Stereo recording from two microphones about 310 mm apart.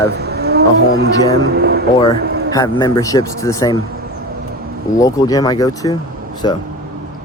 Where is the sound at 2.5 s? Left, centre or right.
Centre.